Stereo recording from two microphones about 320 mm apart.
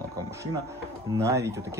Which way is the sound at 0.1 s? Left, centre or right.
Centre.